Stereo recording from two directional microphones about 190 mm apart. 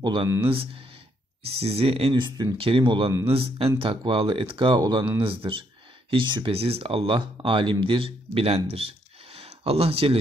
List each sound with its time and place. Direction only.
0.0 s speech: 25° right (ahead or behind)